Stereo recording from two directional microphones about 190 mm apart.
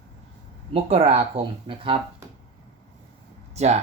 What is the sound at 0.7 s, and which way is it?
Speech, 30° right (ahead or behind).